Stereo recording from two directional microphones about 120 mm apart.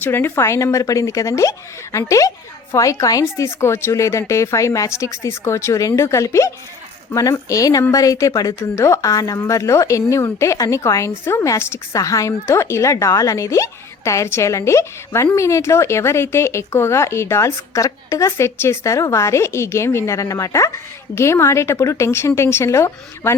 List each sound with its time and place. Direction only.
0.0 s a woman's voice: 20° left (ahead or behind)